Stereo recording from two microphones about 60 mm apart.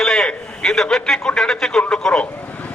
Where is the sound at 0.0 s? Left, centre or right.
Centre.